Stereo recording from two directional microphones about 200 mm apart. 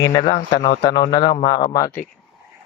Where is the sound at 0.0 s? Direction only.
20° left (ahead or behind).